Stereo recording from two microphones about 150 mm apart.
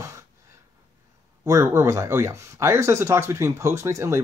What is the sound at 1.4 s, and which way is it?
Speech, 20° right (ahead or behind).